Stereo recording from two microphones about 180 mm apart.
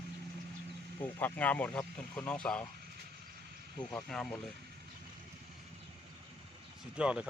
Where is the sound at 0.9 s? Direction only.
10° left (ahead or behind).